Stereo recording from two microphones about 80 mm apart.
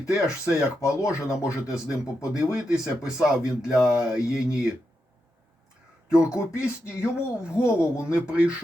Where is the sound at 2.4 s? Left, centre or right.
Centre.